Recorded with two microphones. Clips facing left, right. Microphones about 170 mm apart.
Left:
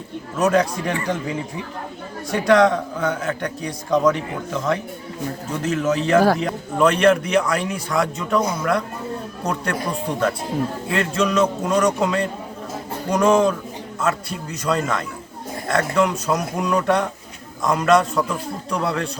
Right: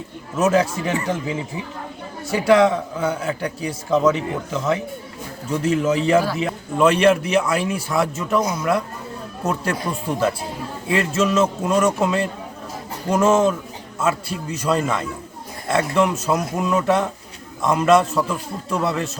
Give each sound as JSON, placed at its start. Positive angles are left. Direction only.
{"t": 0.3, "sound": "speech", "side_deg": -5}
{"t": 2.5, "sound": "a man's voice", "side_deg": -5}